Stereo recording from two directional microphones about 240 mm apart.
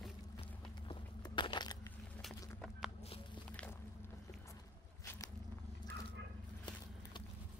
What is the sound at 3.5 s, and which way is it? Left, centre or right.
Walk, centre.